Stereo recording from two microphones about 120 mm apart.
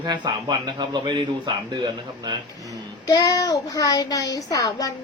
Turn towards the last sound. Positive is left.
turn(degrees=30)  # may be behind; listen again after turning